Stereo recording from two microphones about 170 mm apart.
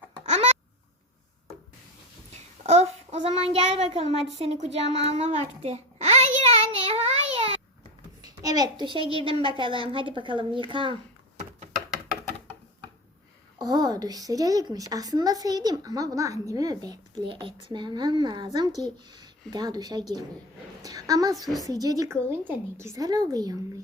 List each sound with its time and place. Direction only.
0.3 s babbling: 40° right (ahead or behind)
2.3 s child singing: 40° right (ahead or behind)
8.2 s a sound: 20° right (ahead or behind)
8.8 s a woman's voice: 30° right (ahead or behind)
13.6 s a woman's voice: 25° right (ahead or behind)